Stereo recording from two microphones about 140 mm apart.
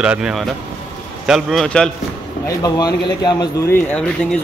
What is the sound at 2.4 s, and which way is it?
Speech, 25° left (ahead or behind).